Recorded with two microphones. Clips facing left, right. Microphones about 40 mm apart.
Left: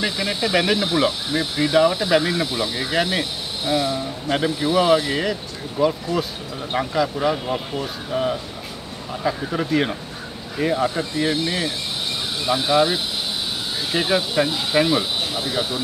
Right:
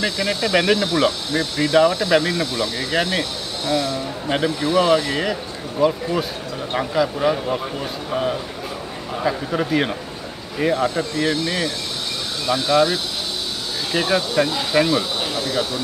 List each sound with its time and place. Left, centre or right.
0.0 s speech: centre
10.6 s speech: centre